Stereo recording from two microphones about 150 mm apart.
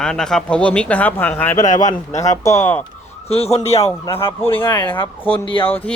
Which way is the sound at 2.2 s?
20° left (ahead or behind).